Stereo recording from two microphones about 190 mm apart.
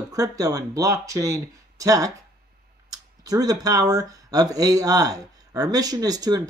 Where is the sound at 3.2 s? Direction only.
20° right (ahead or behind).